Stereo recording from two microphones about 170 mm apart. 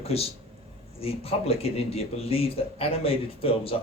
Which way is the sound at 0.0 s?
35° left (ahead or behind).